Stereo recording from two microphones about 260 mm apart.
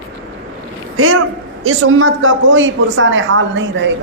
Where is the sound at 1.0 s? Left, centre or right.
Right.